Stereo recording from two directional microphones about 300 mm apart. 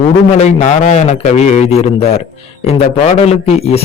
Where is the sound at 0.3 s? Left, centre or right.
Left.